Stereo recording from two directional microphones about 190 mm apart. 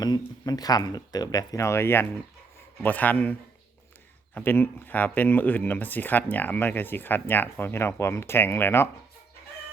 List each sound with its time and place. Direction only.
0.0 s speech: 20° left (ahead or behind)
4.4 s speech: 10° left (ahead or behind)